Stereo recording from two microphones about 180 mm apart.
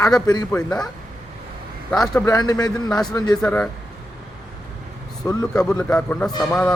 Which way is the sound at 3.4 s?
10° left (ahead or behind).